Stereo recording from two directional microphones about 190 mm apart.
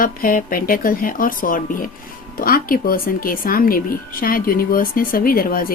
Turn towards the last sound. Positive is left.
turn(degrees=50)  # may be behind; listen again after turning